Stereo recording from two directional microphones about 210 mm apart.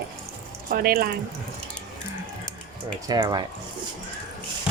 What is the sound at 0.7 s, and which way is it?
Speech, 45° right (ahead or behind).